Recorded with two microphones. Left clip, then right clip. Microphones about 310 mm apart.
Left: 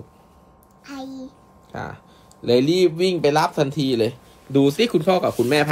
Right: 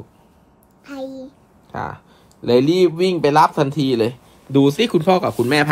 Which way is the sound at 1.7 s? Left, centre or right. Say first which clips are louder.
Right 5 dB; right.